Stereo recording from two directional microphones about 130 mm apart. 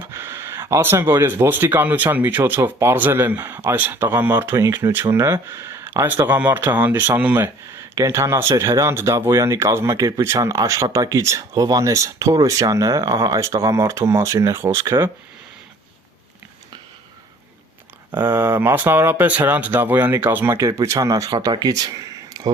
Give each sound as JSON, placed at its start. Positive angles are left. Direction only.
{"t": 0.1, "sound": "speech", "side_deg": -20}
{"t": 18.2, "sound": "speech", "side_deg": -15}